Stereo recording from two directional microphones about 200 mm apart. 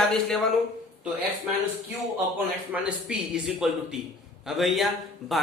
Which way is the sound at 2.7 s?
5° right (ahead or behind).